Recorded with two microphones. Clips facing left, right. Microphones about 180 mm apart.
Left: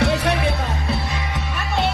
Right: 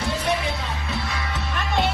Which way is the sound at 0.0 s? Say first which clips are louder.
Left 5 dB; 70° left (ahead or behind).